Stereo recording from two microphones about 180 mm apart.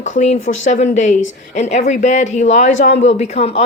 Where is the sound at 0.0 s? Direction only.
40° left (ahead or behind).